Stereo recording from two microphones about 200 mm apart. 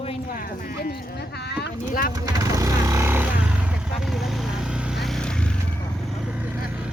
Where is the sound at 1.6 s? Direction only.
45° left (ahead or behind).